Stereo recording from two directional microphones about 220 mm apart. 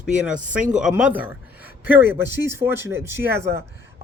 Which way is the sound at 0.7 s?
5° right (ahead or behind).